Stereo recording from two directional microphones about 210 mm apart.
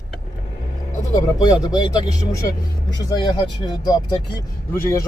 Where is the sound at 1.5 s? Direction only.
20° left (ahead or behind).